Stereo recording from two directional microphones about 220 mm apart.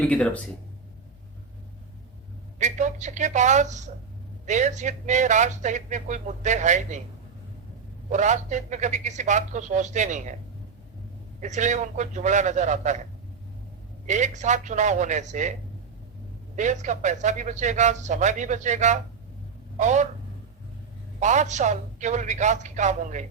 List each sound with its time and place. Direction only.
0.0 s speech: 5° left (ahead or behind)
2.6 s speech: 35° right (ahead or behind)
8.1 s speech: 35° right (ahead or behind)
11.3 s speech: 35° right (ahead or behind)
14.1 s speech: 35° right (ahead or behind)
16.6 s speech: 35° right (ahead or behind)
21.2 s speech: 35° right (ahead or behind)